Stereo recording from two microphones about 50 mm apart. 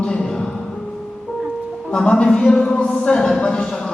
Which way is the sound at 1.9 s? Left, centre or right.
Centre.